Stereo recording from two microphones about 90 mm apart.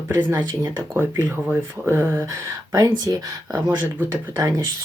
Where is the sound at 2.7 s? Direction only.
40° right (ahead or behind).